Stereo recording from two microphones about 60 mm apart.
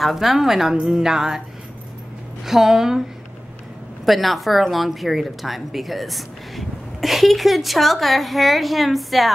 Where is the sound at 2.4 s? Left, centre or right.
Centre.